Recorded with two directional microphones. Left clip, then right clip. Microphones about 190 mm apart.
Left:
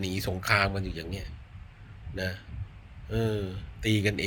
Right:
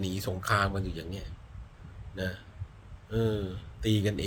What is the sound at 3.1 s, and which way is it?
A man's voice, 15° right (ahead or behind).